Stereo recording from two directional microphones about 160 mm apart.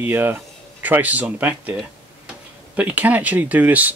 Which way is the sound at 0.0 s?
15° right (ahead or behind).